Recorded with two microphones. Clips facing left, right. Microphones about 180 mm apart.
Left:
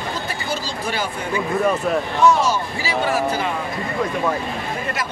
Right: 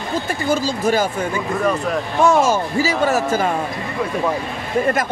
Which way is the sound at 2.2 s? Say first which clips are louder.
Right 3 dB; 45° right (ahead or behind).